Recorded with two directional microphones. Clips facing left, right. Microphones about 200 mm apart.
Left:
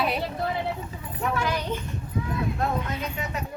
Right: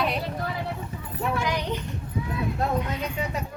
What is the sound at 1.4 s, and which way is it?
Speech, 15° right (ahead or behind).